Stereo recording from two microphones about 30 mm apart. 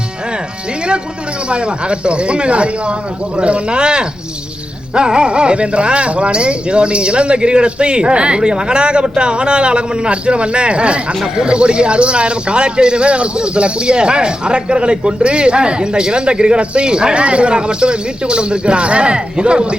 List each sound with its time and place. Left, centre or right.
1.5 s speech: right